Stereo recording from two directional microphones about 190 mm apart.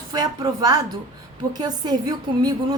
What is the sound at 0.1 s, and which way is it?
A woman's voice, 20° right (ahead or behind).